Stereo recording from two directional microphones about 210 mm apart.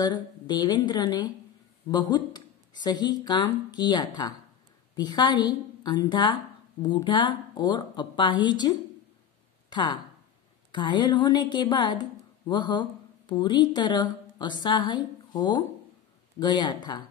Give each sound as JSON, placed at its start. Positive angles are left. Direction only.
{"t": 0.0, "sound": "a woman's voice", "side_deg": 20}